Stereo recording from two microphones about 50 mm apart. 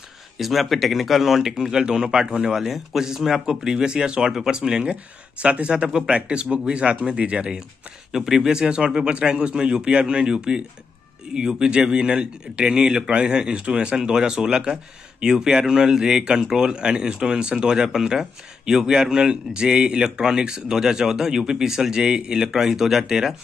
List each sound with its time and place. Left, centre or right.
0.4 s speech: centre